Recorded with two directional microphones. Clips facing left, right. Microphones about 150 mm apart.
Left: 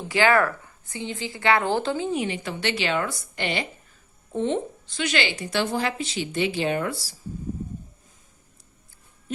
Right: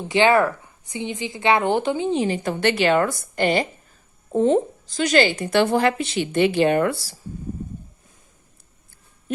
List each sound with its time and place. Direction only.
0.1 s a woman's voice: 20° right (ahead or behind)
2.2 s a woman's voice: 45° right (ahead or behind); by 7.2 s 60° right (ahead or behind)